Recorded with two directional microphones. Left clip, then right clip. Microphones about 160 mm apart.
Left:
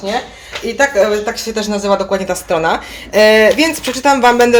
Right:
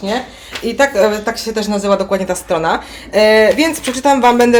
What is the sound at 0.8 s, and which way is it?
Speech, 40° right (ahead or behind).